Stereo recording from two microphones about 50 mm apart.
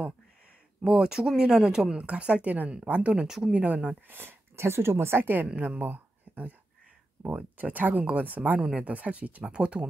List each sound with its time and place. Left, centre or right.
0.8 s speech: centre
3.3 s speech: centre
3.5 s speech: right
4.1 s speech: right
5.6 s speech: right
7.5 s speech: right